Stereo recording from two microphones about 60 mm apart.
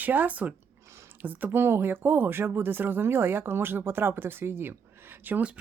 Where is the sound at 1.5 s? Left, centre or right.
Right.